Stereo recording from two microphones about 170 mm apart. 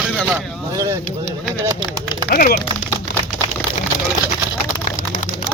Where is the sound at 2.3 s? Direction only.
60° left (ahead or behind).